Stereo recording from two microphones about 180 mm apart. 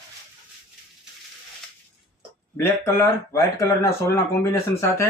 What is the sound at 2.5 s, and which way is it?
Speech, 10° left (ahead or behind).